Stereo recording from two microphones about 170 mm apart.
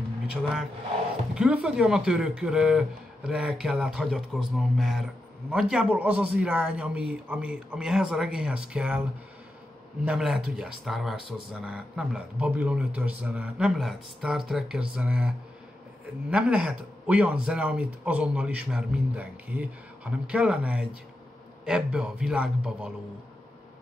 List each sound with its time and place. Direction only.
1.3 s speech: 5° right (ahead or behind)
10.0 s a man's voice: 5° right (ahead or behind)